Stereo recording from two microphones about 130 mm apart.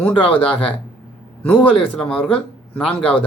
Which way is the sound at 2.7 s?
10° left (ahead or behind).